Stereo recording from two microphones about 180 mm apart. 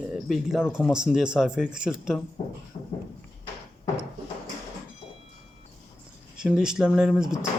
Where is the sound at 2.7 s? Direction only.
25° left (ahead or behind).